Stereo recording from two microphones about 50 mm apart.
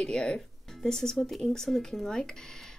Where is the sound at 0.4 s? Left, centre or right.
Centre.